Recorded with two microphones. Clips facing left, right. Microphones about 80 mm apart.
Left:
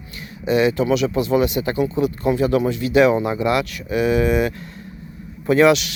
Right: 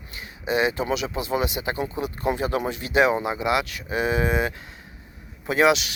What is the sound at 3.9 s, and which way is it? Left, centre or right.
Speech, right.